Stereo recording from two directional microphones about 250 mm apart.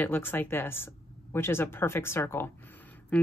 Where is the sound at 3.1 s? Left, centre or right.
Centre.